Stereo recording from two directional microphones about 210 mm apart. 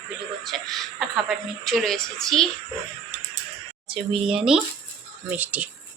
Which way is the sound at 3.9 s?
5° right (ahead or behind).